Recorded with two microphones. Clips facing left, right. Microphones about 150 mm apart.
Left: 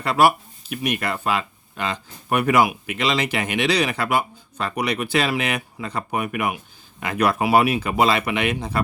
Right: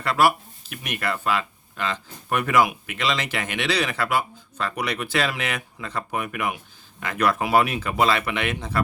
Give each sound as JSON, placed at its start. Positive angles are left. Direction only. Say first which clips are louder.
{"t": 0.0, "sound": "speech", "louder": "left 3 dB", "side_deg": 15}